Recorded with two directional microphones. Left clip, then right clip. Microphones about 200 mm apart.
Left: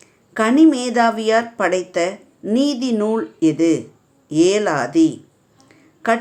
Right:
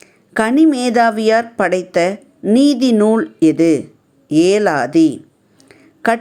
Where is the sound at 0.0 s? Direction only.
30° right (ahead or behind).